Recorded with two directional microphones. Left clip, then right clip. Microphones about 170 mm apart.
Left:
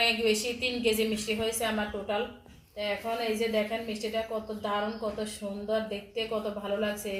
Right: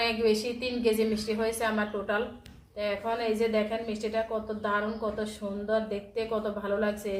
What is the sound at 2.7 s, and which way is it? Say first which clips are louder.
A woman's voice: right 1 dB; 10° right (ahead or behind).